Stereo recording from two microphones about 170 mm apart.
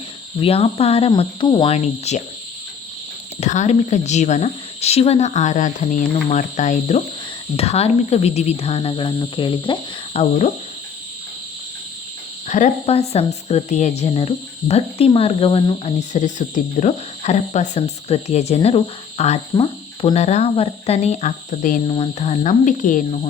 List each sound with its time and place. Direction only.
0.4 s cricket: 35° left (ahead or behind)
3.4 s speech: 45° left (ahead or behind)
7.5 s cricket: 35° left (ahead or behind)
12.5 s cricket: 45° left (ahead or behind)
21.8 s speech: 35° left (ahead or behind); by 23.0 s 50° left (ahead or behind)